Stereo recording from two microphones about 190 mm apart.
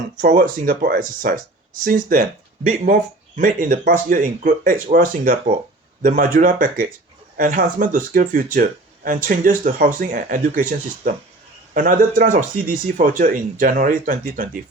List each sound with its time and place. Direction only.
0.2 s speech: 45° right (ahead or behind)